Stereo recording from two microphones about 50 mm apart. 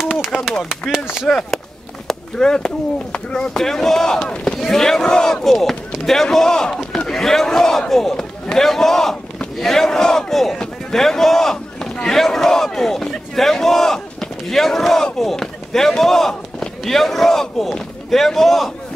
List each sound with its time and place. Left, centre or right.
0.1 s a sound: centre
1.2 s a man's voice: centre
3.5 s a man's voice: centre